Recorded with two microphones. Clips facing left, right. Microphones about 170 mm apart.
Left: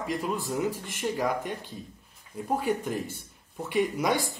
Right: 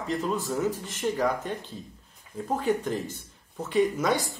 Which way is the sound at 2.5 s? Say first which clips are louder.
Right 2 dB; 10° left (ahead or behind).